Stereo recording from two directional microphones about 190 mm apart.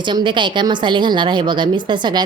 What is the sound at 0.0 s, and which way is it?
Speech, 25° right (ahead or behind).